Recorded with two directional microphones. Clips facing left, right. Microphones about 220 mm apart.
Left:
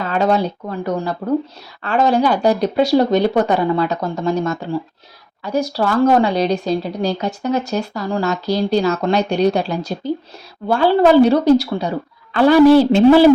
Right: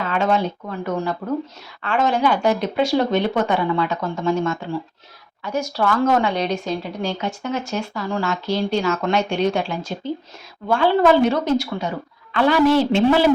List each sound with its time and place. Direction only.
0.0 s a woman's voice: 35° left (ahead or behind)